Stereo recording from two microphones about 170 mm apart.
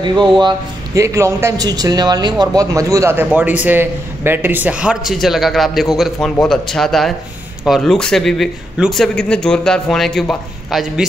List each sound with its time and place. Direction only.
0.0 s a man's voice: 25° right (ahead or behind); by 11.1 s centre (ahead or behind)